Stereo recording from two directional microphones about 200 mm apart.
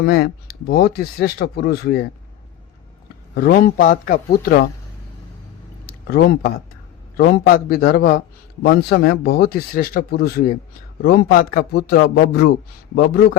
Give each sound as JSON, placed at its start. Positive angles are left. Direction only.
{"t": 0.0, "sound": "speech", "side_deg": 50}
{"t": 3.3, "sound": "speech", "side_deg": 50}
{"t": 6.1, "sound": "speech", "side_deg": 50}